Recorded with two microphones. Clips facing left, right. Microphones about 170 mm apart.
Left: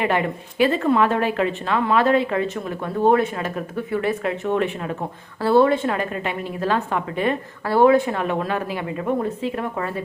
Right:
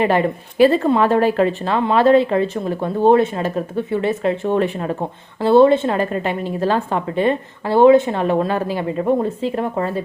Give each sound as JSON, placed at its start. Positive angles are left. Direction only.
{"t": 0.0, "sound": "a woman's voice", "side_deg": -35}
{"t": 5.4, "sound": "a woman's voice", "side_deg": -25}